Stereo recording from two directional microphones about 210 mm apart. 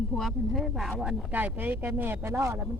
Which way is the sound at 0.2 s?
Centre (ahead or behind).